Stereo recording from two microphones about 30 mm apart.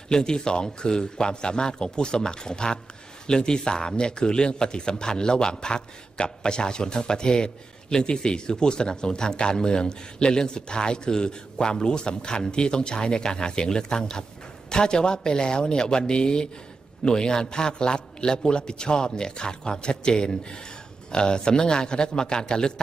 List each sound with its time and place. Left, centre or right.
0.1 s a man's voice: left